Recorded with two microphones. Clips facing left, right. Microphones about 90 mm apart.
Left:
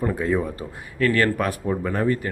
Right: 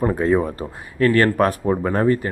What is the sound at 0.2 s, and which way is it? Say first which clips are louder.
Speech: right 5 dB; 45° right (ahead or behind).